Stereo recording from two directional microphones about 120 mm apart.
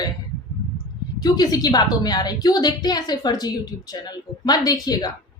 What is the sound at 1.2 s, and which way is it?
A woman's voice, 30° left (ahead or behind).